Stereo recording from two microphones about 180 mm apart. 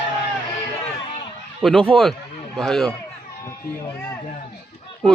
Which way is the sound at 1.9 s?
5° left (ahead or behind).